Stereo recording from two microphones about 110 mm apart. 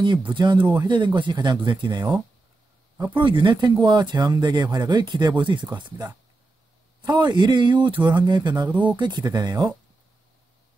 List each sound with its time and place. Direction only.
0.3 s speech: 45° right (ahead or behind)